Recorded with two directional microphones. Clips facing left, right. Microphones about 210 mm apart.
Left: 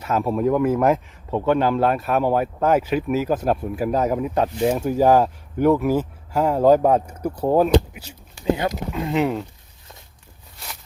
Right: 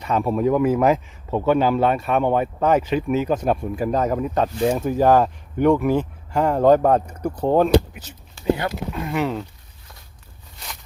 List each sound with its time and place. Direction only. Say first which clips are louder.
0.0 s speech: even; 5° left (ahead or behind); by 9.3 s 20° left (ahead or behind)